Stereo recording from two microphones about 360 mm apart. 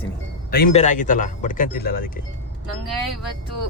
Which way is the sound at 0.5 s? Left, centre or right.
Left.